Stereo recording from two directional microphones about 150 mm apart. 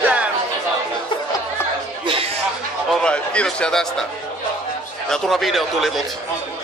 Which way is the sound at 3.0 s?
5° left (ahead or behind).